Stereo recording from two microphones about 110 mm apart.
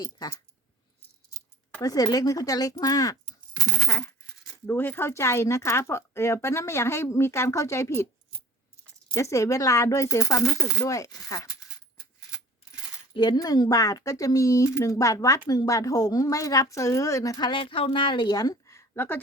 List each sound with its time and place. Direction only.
0.0 s a woman's voice: 40° left (ahead or behind)
1.8 s a woman's voice: 35° left (ahead or behind)
9.1 s speech: 25° left (ahead or behind)
13.1 s a woman's voice: 40° left (ahead or behind); by 19.2 s 20° left (ahead or behind)